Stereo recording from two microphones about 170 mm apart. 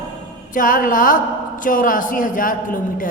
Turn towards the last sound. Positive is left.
turn(degrees=50)  # may be behind; listen again after turning